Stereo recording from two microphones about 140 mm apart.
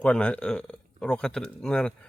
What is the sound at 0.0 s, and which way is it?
Speech, 10° left (ahead or behind).